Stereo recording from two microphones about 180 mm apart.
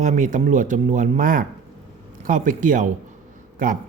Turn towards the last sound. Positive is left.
turn(degrees=-50)  # may be behind; listen again after turning